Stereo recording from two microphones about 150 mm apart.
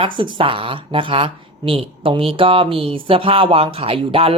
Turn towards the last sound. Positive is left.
turn(degrees=-40)  # may be behind; listen again after turning